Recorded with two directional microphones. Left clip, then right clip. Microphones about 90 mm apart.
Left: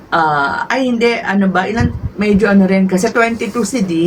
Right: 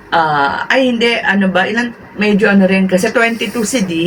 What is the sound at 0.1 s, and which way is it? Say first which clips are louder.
Speech: right 1 dB; 20° left (ahead or behind).